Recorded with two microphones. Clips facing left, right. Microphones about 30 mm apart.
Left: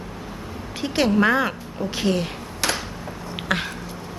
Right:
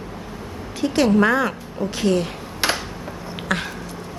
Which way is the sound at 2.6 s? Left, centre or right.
Right.